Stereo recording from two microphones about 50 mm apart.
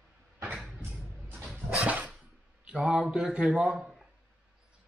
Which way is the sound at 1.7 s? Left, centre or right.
Right.